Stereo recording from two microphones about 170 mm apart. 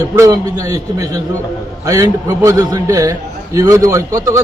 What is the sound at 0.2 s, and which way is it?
A man's voice, 20° right (ahead or behind).